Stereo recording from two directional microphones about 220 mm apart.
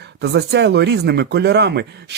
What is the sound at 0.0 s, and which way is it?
Speech, 50° right (ahead or behind).